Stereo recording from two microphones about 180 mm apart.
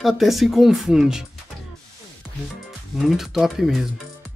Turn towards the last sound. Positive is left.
turn(degrees=0)  # may be behind; listen again after turning